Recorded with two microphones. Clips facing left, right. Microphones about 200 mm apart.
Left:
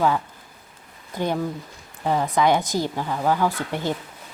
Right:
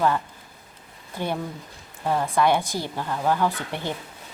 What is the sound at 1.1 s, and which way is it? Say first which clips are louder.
Speech: left 4 dB; 15° left (ahead or behind).